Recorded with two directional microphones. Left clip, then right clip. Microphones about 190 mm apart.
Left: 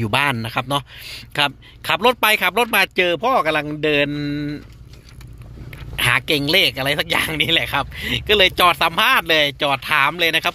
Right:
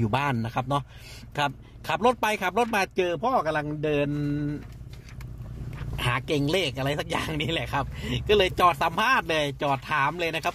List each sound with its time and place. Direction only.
0.0 s speech: 5° left (ahead or behind)
5.9 s speech: 5° left (ahead or behind)